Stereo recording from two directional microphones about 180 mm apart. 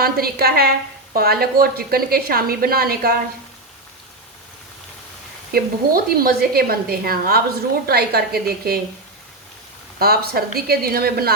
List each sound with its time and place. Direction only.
0.0 s a woman's voice: 60° right (ahead or behind)
5.5 s a woman's voice: 55° right (ahead or behind)
10.0 s a woman's voice: 55° right (ahead or behind)